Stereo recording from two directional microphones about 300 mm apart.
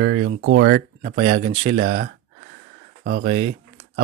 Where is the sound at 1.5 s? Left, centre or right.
Centre.